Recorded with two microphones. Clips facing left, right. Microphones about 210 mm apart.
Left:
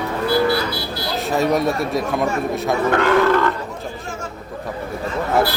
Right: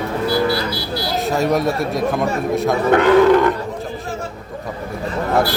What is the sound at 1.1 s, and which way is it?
Speech, centre (ahead or behind).